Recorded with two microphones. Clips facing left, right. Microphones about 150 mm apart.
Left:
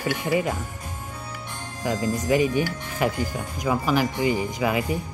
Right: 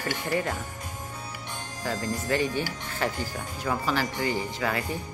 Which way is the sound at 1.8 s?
15° left (ahead or behind).